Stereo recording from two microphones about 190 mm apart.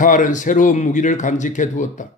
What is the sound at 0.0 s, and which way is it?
Speech, 45° left (ahead or behind).